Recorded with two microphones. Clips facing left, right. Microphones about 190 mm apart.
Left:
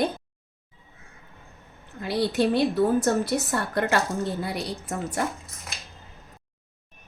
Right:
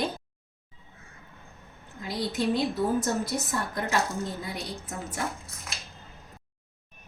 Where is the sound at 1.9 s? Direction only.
65° left (ahead or behind).